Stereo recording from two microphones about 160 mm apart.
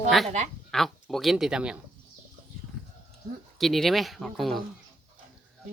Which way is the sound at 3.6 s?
Centre (ahead or behind).